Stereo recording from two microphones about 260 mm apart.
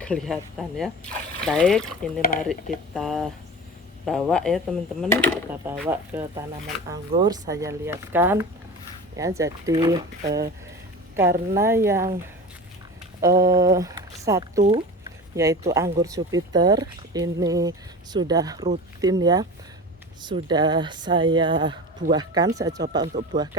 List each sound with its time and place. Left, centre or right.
0.0 s speech: centre
2.2 s speech: left
2.9 s speech: centre
11.2 s speech: centre
13.2 s speech: centre
23.3 s speech: right